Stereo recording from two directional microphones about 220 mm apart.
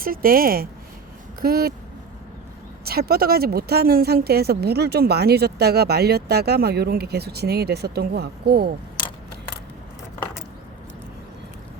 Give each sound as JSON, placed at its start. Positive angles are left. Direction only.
{"t": 0.0, "sound": "speech", "side_deg": -40}
{"t": 2.8, "sound": "speech", "side_deg": -45}